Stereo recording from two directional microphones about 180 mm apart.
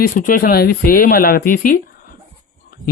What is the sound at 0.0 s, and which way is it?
Speech, 55° left (ahead or behind).